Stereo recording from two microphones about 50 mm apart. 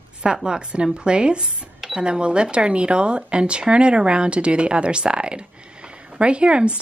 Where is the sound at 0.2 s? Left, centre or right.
Centre.